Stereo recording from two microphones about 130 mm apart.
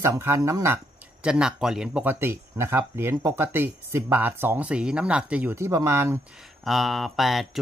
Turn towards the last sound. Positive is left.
turn(degrees=0)  # may be behind; listen again after turning